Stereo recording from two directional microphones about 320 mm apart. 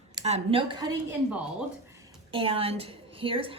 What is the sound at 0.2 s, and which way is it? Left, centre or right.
Speech, centre.